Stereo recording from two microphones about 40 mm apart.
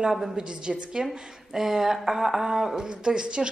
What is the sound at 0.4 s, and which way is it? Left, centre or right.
Speech, right.